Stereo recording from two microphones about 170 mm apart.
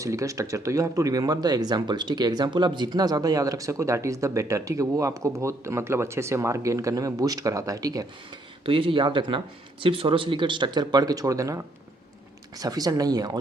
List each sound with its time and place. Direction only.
0.0 s speech: 20° right (ahead or behind)